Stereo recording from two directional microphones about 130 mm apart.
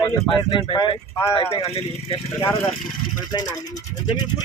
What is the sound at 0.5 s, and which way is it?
Speech, 40° left (ahead or behind).